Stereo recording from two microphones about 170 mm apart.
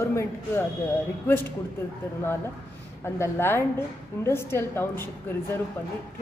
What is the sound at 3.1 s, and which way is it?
A woman's voice, 15° left (ahead or behind).